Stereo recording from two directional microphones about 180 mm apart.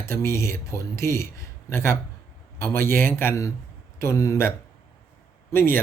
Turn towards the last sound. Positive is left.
turn(degrees=15)  # may be behind; listen again after turning